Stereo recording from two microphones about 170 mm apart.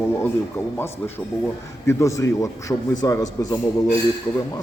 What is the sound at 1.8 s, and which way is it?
A man's voice, 20° left (ahead or behind).